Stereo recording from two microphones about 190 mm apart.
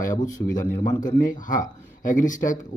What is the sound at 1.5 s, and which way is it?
Speech, 45° left (ahead or behind).